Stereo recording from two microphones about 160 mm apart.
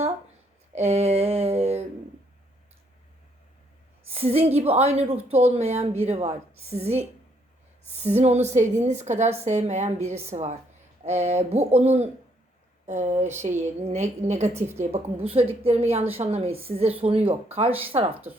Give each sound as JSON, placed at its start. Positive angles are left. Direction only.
{"t": 0.7, "sound": "a sound", "side_deg": -40}
{"t": 4.1, "sound": "a woman's voice", "side_deg": -40}
{"t": 8.1, "sound": "a woman's voice", "side_deg": -45}
{"t": 13.5, "sound": "a woman's voice", "side_deg": -15}
{"t": 13.9, "sound": "a woman's voice", "side_deg": -45}
{"t": 14.5, "sound": "a woman's voice", "side_deg": -15}
{"t": 14.9, "sound": "a woman's voice", "side_deg": -40}